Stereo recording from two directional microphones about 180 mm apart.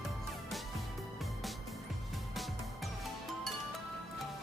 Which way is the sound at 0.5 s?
Centre (ahead or behind).